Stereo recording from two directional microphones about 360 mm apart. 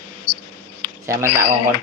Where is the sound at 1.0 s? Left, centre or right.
Centre.